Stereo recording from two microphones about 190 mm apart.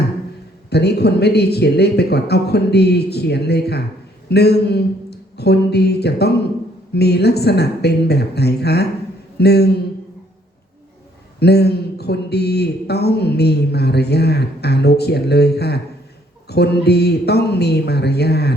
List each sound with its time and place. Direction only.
0.7 s a man's voice: 60° left (ahead or behind)
11.3 s a man's voice: 60° left (ahead or behind)